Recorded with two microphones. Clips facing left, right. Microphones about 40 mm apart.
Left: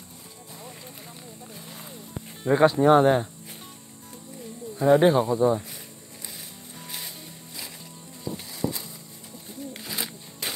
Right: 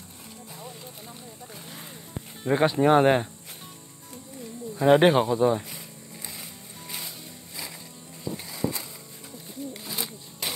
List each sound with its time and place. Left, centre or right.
2.5 s speech: centre
3.0 s speech: right
4.7 s speech: right